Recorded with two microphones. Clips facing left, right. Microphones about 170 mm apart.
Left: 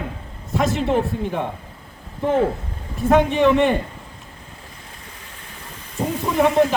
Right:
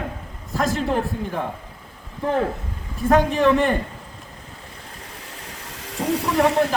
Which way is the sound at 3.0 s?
Centre (ahead or behind).